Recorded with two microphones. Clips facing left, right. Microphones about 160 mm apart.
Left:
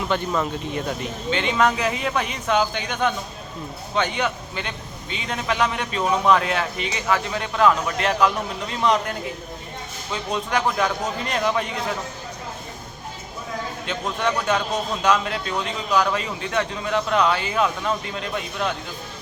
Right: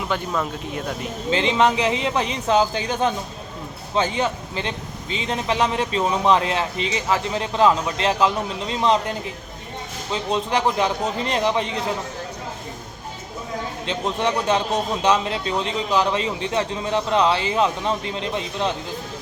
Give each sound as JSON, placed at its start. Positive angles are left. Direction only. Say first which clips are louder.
{"t": 0.1, "sound": "speech", "louder": "left 1 dB", "side_deg": 0}
{"t": 1.3, "sound": "a man's voice", "louder": "right 2 dB", "side_deg": -30}
{"t": 13.8, "sound": "a man's voice", "louder": "right 2 dB", "side_deg": -25}